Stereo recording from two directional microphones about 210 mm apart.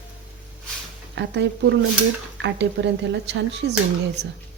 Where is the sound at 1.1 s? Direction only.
55° right (ahead or behind).